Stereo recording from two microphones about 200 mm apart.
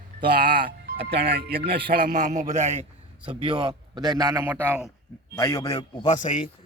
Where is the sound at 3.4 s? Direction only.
25° right (ahead or behind); by 4.9 s 10° right (ahead or behind).